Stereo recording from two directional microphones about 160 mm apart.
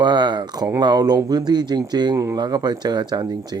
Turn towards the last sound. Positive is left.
turn(degrees=-25)  # may be behind; listen again after turning